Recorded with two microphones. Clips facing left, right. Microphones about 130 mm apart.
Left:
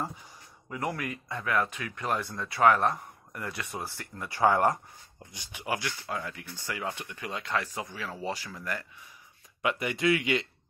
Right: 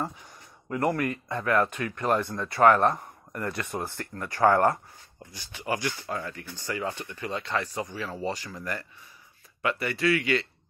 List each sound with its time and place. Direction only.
0.7 s speech: 50° right (ahead or behind)
1.7 s speech: centre (ahead or behind)
2.0 s speech: 50° right (ahead or behind)
4.4 s speech: 15° left (ahead or behind)